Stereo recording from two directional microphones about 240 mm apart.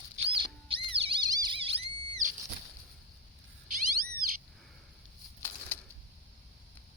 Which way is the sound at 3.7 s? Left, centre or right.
Right.